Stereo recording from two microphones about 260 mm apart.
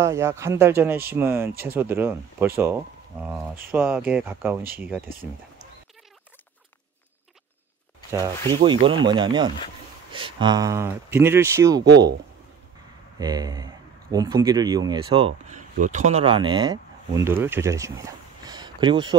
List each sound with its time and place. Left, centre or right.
0.0 s speech: centre
8.1 s speech: centre
13.2 s speech: centre